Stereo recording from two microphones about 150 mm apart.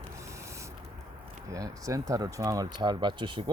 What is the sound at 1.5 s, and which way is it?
Speech, 20° right (ahead or behind).